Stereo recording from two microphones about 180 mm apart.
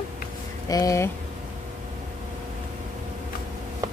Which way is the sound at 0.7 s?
15° left (ahead or behind).